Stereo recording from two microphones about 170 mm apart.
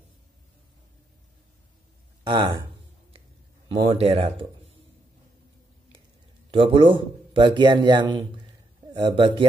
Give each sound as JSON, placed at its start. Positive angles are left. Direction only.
{"t": 2.2, "sound": "a man's voice", "side_deg": -25}
{"t": 3.7, "sound": "speech", "side_deg": -35}
{"t": 6.5, "sound": "a man's voice", "side_deg": -30}